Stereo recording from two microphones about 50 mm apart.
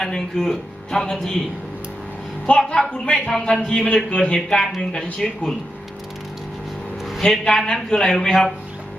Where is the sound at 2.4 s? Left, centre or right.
Centre.